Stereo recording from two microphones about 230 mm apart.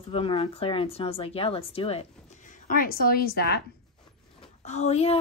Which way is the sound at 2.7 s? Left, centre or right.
Left.